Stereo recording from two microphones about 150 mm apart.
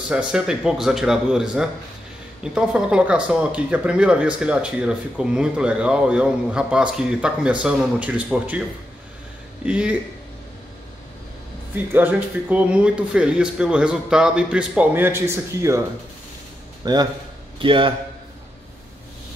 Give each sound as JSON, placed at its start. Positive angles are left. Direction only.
{"t": 0.1, "sound": "speech", "side_deg": -5}
{"t": 9.7, "sound": "speech", "side_deg": -10}
{"t": 11.7, "sound": "speech", "side_deg": -10}
{"t": 16.8, "sound": "a man's voice", "side_deg": -25}